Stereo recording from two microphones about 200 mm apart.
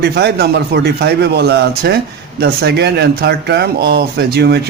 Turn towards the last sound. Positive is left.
turn(degrees=-55)  # may be behind; listen again after turning